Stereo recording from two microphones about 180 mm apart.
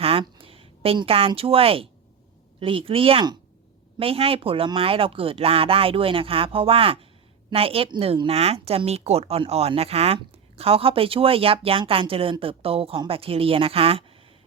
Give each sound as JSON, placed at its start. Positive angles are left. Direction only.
{"t": 0.0, "sound": "a woman's voice", "side_deg": -30}